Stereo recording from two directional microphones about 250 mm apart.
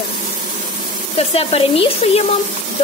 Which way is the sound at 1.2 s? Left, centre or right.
Left.